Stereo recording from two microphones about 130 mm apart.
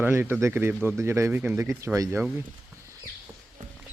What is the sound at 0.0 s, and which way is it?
Speech, 20° right (ahead or behind).